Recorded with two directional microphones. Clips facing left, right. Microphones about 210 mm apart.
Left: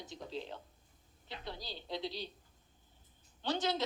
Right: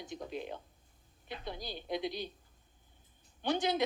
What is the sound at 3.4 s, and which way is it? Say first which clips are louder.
Speech: right 3 dB; 15° right (ahead or behind).